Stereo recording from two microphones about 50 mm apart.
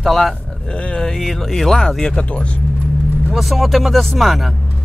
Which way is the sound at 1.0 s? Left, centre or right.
Centre.